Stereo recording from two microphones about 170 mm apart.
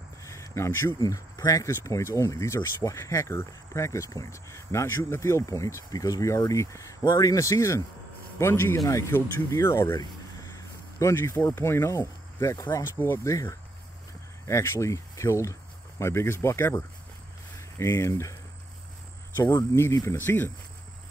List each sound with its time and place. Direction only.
0.2 s speech: 15° left (ahead or behind)
19.3 s speech: 15° left (ahead or behind)